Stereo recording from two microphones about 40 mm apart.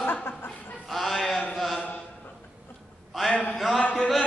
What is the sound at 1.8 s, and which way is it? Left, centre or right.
Chant, left.